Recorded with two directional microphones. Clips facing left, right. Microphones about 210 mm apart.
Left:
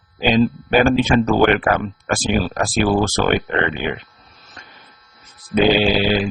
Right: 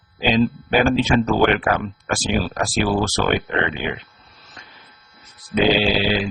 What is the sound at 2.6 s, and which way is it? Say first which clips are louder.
Speech: left 4 dB; 50° left (ahead or behind).